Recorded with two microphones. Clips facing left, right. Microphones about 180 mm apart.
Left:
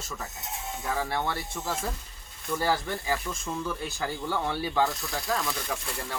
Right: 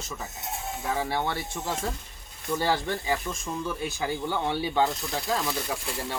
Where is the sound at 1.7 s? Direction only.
Centre (ahead or behind).